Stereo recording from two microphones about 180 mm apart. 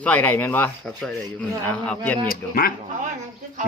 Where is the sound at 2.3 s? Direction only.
55° left (ahead or behind).